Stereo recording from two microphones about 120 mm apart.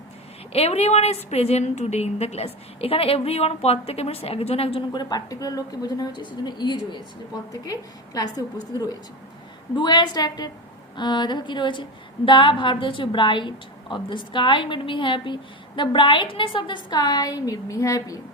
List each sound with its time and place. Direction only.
0.5 s a woman's voice: 60° left (ahead or behind)
4.9 s a woman's voice: 35° left (ahead or behind)